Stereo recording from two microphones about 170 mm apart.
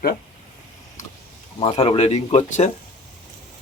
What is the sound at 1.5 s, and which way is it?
Speech, 35° left (ahead or behind).